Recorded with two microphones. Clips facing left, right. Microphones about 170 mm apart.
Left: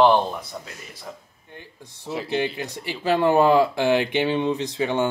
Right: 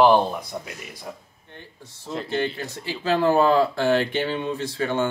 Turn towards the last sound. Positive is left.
turn(degrees=15)  # may be behind; listen again after turning